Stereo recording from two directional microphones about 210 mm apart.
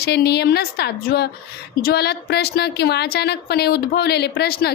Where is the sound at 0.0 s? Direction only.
50° left (ahead or behind).